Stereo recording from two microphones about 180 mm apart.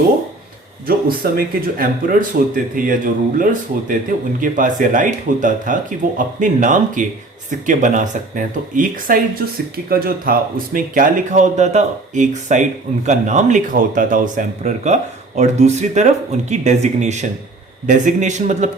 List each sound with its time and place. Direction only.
0.9 s speech: 55° right (ahead or behind)